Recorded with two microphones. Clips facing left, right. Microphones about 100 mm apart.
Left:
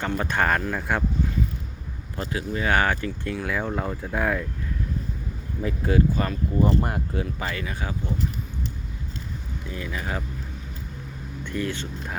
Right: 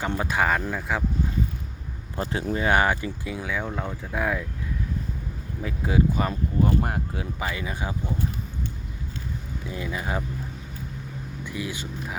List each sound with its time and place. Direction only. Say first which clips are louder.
0.1 s speech: left 1 dB; 10° right (ahead or behind)
2.2 s speech: right 2 dB; 30° right (ahead or behind); by 3.4 s 15° right (ahead or behind)
3.4 s speech: left 2 dB; centre (ahead or behind)
5.6 s speech: left 1 dB; 10° right (ahead or behind)
9.6 s speech: right 1 dB; 20° right (ahead or behind)
11.4 s speech: left 4 dB; 10° right (ahead or behind)